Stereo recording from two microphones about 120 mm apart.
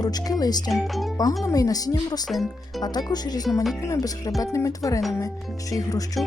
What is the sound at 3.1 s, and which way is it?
Speech, 35° left (ahead or behind).